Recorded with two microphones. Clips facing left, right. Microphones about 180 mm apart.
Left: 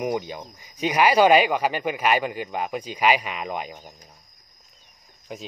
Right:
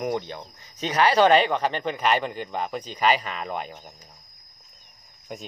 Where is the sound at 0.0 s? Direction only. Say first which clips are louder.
Left 1 dB; 10° left (ahead or behind).